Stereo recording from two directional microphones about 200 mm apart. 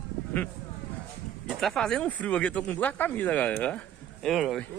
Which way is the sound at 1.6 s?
Centre (ahead or behind).